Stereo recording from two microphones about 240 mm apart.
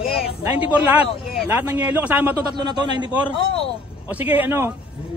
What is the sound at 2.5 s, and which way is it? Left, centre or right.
Speech, centre.